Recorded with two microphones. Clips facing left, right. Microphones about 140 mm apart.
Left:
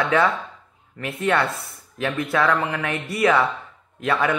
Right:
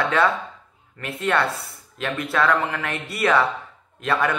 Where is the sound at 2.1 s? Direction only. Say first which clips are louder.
Even; 20° left (ahead or behind).